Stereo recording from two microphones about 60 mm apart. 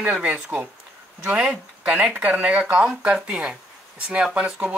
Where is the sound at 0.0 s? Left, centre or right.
Centre.